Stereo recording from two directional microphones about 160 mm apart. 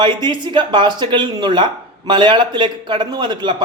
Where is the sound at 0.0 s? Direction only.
30° right (ahead or behind).